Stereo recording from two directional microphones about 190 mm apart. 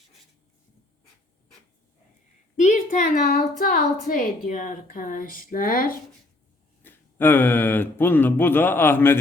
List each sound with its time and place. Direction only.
2.6 s a sound: 40° left (ahead or behind)
3.6 s a woman's voice: 45° left (ahead or behind)
6.8 s speech: 10° left (ahead or behind)